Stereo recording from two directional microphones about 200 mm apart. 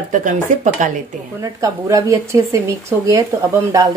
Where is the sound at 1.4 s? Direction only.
15° right (ahead or behind).